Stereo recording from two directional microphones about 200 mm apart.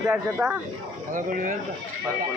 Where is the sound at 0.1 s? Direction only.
10° right (ahead or behind).